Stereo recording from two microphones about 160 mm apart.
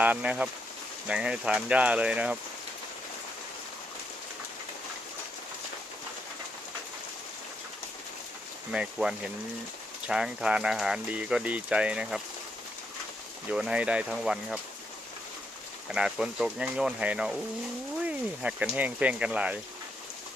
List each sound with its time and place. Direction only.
0.0 s speech: 10° right (ahead or behind)
8.7 s speech: 5° right (ahead or behind)
13.5 s speech: 5° right (ahead or behind)
15.9 s speech: 5° right (ahead or behind)